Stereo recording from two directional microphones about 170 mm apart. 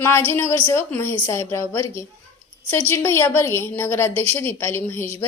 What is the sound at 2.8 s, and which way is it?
A woman's voice, 15° left (ahead or behind).